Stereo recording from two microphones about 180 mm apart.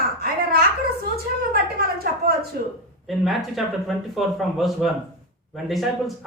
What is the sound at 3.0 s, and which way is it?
Speech, centre (ahead or behind).